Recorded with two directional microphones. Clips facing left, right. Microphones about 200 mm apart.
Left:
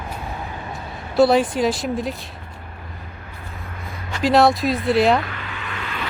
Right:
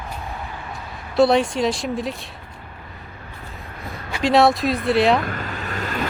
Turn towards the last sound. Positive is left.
turn(degrees=-40)  # may be behind; listen again after turning